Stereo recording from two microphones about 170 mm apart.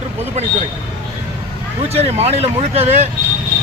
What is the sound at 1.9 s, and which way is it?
Speech, 40° right (ahead or behind).